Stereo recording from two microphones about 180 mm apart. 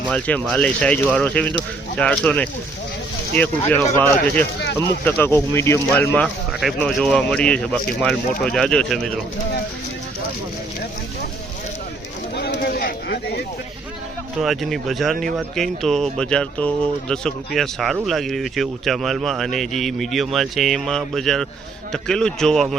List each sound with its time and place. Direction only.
0.1 s speech: 10° left (ahead or behind)
3.9 s speech: 10° left (ahead or behind)
6.2 s speech: centre (ahead or behind)
12.4 s a sound: 60° left (ahead or behind)
14.4 s speech: centre (ahead or behind)